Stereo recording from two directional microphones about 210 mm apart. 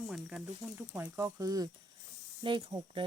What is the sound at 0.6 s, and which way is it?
Speech, 10° right (ahead or behind).